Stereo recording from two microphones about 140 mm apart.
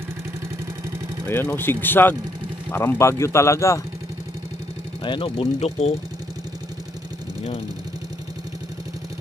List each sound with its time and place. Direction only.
1.2 s speech: 15° left (ahead or behind)
5.0 s speech: 35° left (ahead or behind)